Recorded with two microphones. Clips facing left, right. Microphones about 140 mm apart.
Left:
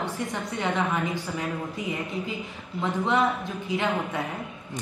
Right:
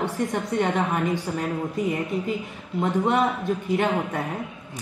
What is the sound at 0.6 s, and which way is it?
Speech, 45° right (ahead or behind).